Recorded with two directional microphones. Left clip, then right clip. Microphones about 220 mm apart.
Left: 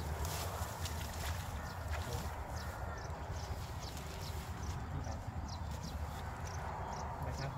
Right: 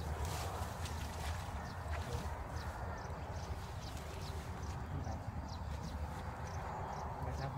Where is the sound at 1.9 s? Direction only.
45° left (ahead or behind).